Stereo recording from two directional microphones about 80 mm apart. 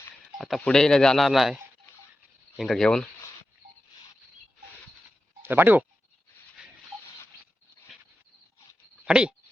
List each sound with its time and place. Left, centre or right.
0.3 s telephone dialing: centre
0.6 s a man's voice: centre
2.6 s speech: centre
5.4 s speech: right
9.0 s speech: centre